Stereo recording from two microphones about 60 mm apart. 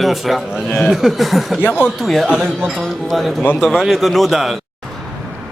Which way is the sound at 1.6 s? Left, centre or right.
Left.